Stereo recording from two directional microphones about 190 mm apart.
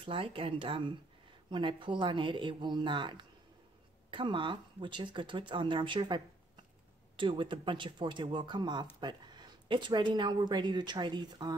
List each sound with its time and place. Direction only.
0.0 s a woman's voice: 30° right (ahead or behind)